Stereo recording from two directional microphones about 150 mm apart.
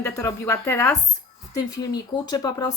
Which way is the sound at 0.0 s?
20° left (ahead or behind).